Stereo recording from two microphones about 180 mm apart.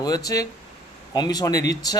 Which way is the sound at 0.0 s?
20° left (ahead or behind).